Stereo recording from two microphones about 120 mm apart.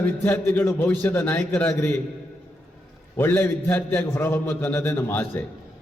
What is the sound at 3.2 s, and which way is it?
A man's voice, 20° left (ahead or behind).